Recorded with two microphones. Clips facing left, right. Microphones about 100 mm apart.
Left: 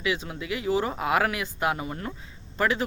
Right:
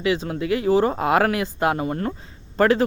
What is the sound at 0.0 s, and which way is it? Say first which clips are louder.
Speech: right 7 dB; 35° right (ahead or behind).